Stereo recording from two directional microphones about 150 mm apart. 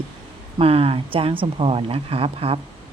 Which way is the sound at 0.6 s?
40° right (ahead or behind).